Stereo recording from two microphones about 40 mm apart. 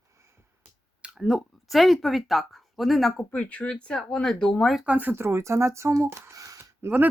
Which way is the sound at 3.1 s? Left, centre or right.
Left.